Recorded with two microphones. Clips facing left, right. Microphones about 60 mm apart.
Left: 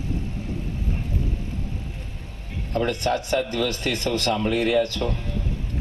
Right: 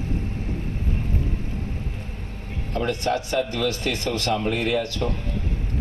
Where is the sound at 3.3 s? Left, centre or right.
Left.